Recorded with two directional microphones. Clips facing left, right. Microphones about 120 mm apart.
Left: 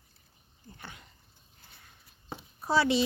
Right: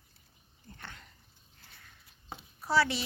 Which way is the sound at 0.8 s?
10° left (ahead or behind).